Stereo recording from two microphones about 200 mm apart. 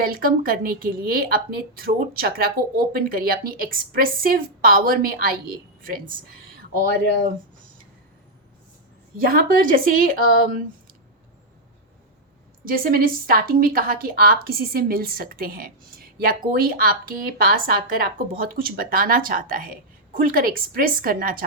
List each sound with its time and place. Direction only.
0.0 s a woman's voice: 45° right (ahead or behind)
9.1 s a woman's voice: 45° right (ahead or behind)
12.6 s a woman's voice: 45° right (ahead or behind)